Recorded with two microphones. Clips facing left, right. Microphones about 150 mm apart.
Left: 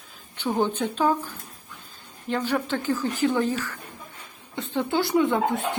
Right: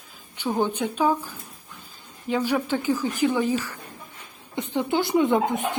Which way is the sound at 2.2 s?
10° right (ahead or behind).